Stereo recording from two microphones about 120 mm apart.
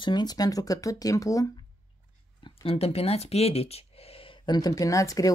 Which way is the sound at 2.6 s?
55° left (ahead or behind).